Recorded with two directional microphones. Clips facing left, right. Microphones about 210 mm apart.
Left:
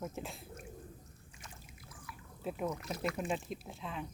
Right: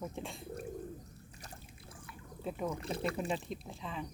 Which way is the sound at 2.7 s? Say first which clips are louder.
Right 1 dB; 30° right (ahead or behind).